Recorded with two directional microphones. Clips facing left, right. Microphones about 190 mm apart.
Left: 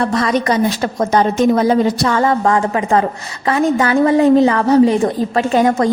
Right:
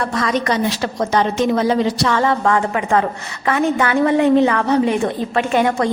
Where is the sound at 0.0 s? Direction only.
35° left (ahead or behind).